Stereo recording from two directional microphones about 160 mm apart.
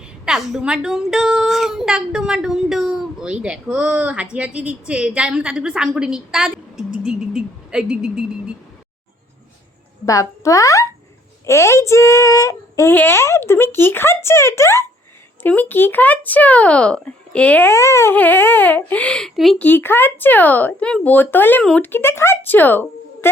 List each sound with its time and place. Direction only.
0.0 s a woman's voice: centre (ahead or behind)
10.1 s a child's voice: 20° left (ahead or behind); by 19.6 s centre (ahead or behind)
19.6 s a child's voice: 15° left (ahead or behind)